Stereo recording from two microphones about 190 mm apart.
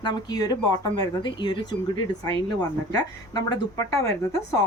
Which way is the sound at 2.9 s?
20° left (ahead or behind).